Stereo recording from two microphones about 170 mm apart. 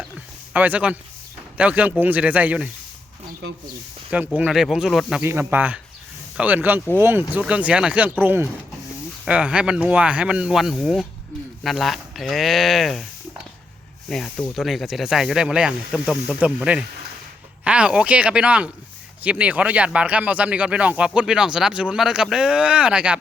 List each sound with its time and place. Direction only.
0.5 s speech: 10° right (ahead or behind)
4.4 s speech: centre (ahead or behind)
5.2 s speech: 15° right (ahead or behind)
14.1 s speech: 5° left (ahead or behind)